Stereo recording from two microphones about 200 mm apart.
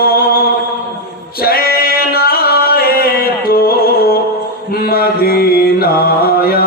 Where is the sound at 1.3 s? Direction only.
50° left (ahead or behind).